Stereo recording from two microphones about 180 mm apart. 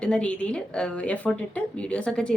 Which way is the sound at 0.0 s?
5° left (ahead or behind).